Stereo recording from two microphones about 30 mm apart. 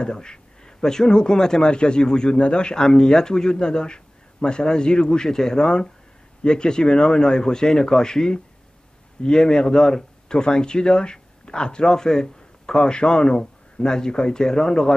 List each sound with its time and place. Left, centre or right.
0.0 s speech: left